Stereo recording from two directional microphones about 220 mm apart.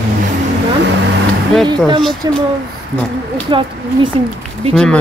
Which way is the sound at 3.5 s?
20° right (ahead or behind).